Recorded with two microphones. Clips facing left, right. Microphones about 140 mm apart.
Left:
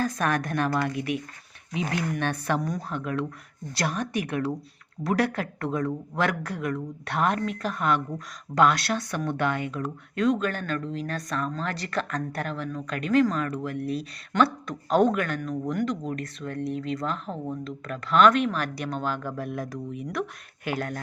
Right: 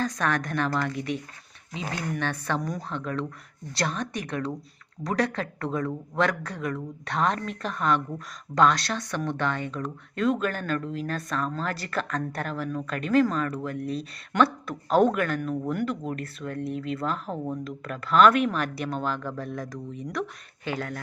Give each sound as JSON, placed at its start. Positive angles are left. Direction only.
{"t": 0.0, "sound": "speech", "side_deg": 10}
{"t": 2.6, "sound": "speech", "side_deg": 0}